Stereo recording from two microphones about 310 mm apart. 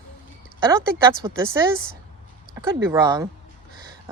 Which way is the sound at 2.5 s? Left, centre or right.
Centre.